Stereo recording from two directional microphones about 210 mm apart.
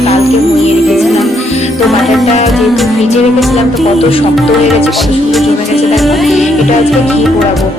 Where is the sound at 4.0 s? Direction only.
25° left (ahead or behind).